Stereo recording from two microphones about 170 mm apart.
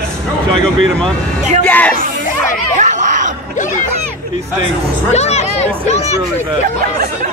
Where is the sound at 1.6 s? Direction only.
10° left (ahead or behind).